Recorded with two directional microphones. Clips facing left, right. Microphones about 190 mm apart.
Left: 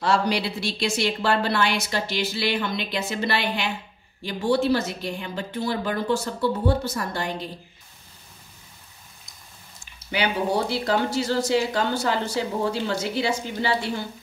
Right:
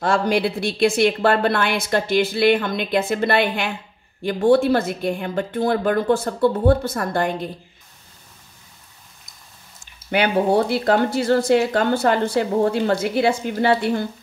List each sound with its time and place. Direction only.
0.0 s a woman's voice: 50° right (ahead or behind)
10.1 s a woman's voice: 55° right (ahead or behind)